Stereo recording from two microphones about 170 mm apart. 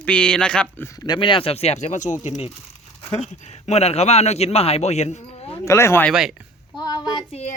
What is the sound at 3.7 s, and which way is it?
A man's voice, 40° left (ahead or behind).